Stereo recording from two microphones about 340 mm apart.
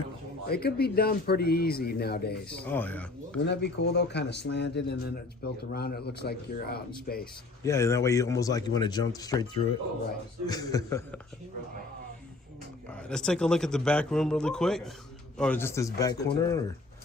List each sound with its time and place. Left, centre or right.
0.4 s speech: left
2.6 s a man's voice: centre
3.4 s speech: left
7.6 s speech: centre
12.9 s a man's voice: centre